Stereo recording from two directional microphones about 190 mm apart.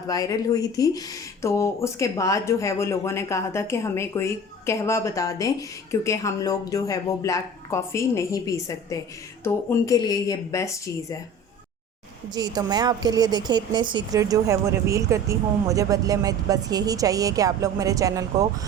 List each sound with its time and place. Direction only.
0.1 s speech: 20° left (ahead or behind)
12.3 s a woman's voice: 20° right (ahead or behind)